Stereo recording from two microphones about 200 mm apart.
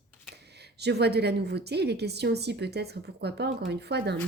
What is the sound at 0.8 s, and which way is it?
Speech, 55° right (ahead or behind).